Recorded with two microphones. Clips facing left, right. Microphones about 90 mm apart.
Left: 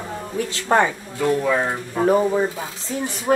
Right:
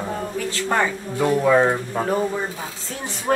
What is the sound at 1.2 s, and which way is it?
Speech, 20° right (ahead or behind).